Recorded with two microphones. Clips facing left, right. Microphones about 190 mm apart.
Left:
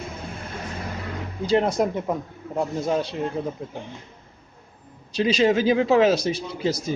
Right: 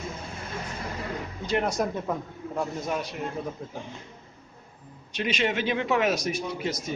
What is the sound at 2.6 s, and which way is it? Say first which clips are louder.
Speech: left 6 dB; 30° left (ahead or behind).